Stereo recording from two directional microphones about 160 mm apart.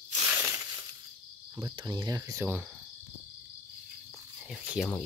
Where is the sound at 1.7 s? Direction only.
25° right (ahead or behind).